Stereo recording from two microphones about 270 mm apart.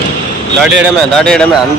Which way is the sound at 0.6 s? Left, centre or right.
Centre.